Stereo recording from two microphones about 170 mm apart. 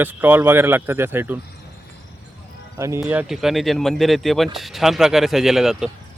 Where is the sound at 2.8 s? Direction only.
15° right (ahead or behind).